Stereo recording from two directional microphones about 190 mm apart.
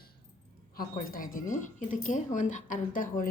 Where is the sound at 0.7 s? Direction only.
50° left (ahead or behind).